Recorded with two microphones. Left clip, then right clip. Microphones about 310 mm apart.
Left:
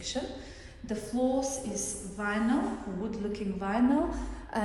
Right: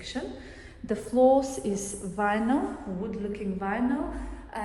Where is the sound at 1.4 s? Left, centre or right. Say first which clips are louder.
Right 2 dB; centre.